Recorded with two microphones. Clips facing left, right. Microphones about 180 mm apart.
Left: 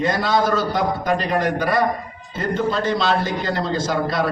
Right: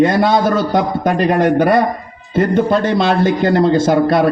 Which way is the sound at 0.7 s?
55° right (ahead or behind).